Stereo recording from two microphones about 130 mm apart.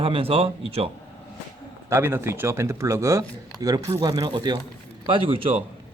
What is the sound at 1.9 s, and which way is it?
A man's voice, 20° right (ahead or behind).